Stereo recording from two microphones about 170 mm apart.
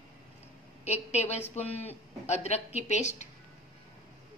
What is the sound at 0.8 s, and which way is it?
A man's voice, 40° left (ahead or behind).